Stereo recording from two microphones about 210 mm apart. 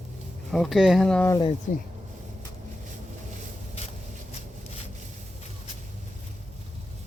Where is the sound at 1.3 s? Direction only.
25° left (ahead or behind).